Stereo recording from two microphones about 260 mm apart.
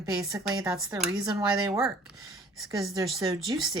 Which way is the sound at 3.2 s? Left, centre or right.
Centre.